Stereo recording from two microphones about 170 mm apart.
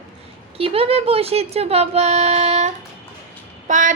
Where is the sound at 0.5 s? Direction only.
35° right (ahead or behind).